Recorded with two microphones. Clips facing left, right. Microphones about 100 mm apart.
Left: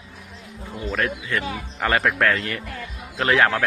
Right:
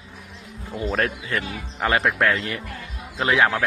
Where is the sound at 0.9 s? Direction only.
30° right (ahead or behind).